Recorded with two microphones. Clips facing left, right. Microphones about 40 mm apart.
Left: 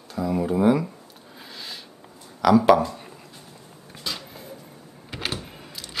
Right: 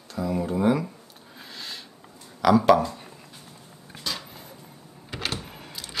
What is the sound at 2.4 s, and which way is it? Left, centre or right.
Speech, centre.